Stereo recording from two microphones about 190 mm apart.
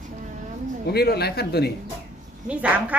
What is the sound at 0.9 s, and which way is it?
Speech, 55° left (ahead or behind).